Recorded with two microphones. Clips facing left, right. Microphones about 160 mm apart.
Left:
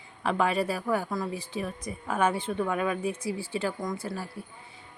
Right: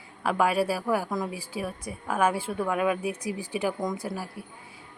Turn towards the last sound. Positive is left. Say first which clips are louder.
# right 1 dB
turn(degrees=-10)  # may be behind; listen again after turning